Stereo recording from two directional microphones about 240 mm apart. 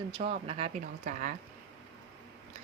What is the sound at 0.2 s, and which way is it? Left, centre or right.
Speech, right.